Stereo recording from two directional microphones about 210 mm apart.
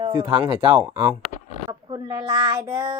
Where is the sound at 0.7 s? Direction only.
10° right (ahead or behind).